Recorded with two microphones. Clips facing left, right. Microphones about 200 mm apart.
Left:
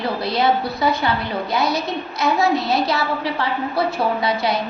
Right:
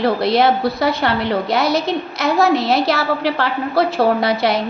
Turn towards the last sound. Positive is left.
turn(degrees=-75)  # may be behind; listen again after turning